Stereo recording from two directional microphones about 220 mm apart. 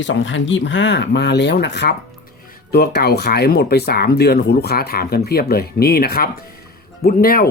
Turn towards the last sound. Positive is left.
turn(degrees=45)  # may be behind; listen again after turning